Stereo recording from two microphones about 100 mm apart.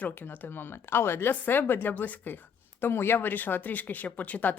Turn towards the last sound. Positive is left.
turn(degrees=15)  # may be behind; listen again after turning